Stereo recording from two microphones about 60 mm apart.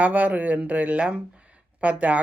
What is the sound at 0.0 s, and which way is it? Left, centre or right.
Speech, right.